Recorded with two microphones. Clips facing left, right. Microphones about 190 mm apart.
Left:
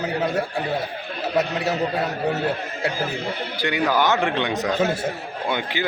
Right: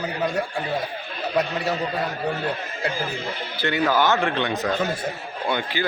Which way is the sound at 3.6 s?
15° left (ahead or behind).